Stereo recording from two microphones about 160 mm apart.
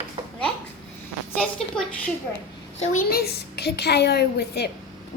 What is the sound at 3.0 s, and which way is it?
A woman's voice, 80° left.